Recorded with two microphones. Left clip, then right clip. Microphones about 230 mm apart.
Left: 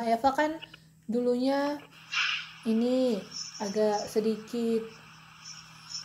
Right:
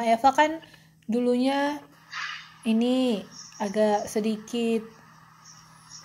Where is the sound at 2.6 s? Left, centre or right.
Right.